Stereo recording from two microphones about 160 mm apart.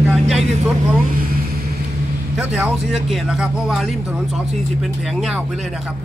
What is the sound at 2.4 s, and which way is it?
Speech, 10° right (ahead or behind).